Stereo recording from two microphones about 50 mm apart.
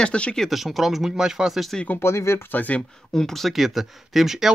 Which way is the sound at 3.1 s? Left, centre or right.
Centre.